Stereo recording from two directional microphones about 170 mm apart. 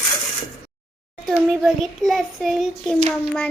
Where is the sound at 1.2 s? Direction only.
Centre (ahead or behind).